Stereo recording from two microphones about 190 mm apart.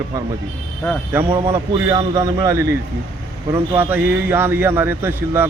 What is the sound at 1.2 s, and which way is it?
A man's voice, 30° right (ahead or behind).